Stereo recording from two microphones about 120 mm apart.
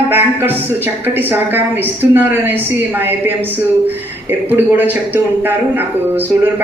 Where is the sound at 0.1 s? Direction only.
15° right (ahead or behind).